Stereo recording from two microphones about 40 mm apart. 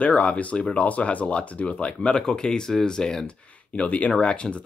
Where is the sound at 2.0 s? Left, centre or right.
Left.